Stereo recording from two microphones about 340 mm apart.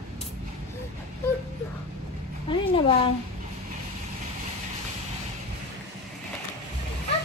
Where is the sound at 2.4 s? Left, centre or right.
Centre.